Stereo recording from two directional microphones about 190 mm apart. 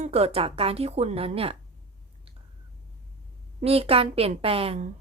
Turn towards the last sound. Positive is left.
turn(degrees=-35)  # may be behind; listen again after turning